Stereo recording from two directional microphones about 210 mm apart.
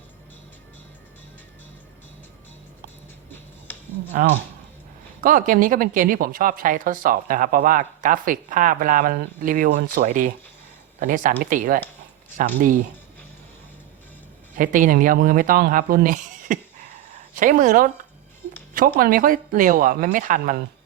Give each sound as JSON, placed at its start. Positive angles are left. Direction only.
{"t": 5.2, "sound": "speech", "side_deg": -40}
{"t": 14.5, "sound": "speech", "side_deg": -40}